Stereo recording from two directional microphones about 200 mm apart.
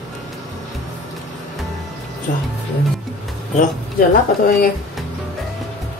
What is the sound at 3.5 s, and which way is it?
Speech, 45° left (ahead or behind).